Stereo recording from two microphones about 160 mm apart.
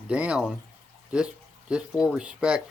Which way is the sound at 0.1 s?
5° right (ahead or behind).